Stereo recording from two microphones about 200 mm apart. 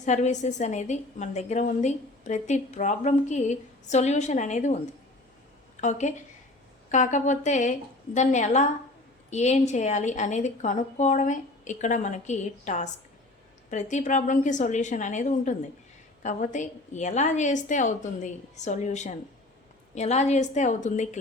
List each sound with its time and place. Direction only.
0.0 s a woman's voice: 35° left (ahead or behind)
5.8 s a woman's voice: 35° left (ahead or behind)